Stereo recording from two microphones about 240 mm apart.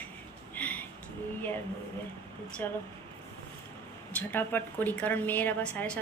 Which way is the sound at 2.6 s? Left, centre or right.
Centre.